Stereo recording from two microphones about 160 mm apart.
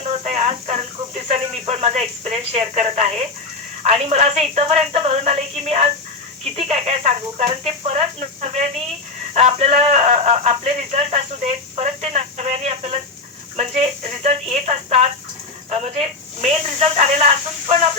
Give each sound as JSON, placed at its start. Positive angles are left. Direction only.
{"t": 0.0, "sound": "speech", "side_deg": -45}